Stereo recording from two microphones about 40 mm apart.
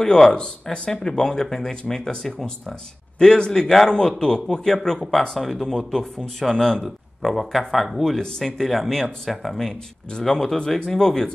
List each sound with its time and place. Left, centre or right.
0.0 s speech: centre
4.9 s speech: centre
5.2 s speech: centre
8.0 s speech: centre